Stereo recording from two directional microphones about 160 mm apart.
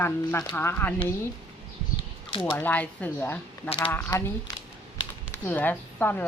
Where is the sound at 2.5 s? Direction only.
10° left (ahead or behind).